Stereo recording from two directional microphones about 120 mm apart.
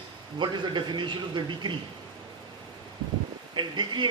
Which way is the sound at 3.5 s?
40° right (ahead or behind).